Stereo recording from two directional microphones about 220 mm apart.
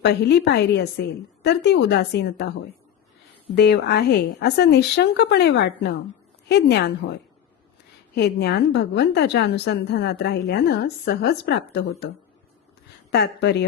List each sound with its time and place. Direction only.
0.0 s a woman's voice: 50° left (ahead or behind)
3.5 s a woman's voice: 45° left (ahead or behind)
8.1 s a woman's voice: 50° left (ahead or behind)